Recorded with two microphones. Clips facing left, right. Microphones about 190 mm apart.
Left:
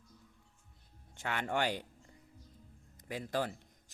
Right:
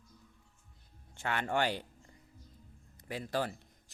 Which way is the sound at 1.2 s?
15° left (ahead or behind).